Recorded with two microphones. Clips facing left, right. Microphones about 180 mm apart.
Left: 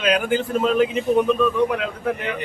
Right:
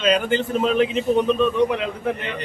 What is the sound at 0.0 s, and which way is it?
A man's voice, 5° left (ahead or behind).